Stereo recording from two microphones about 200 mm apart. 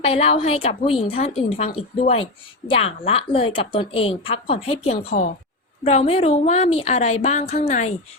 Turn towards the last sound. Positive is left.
turn(degrees=35)  # may be behind; listen again after turning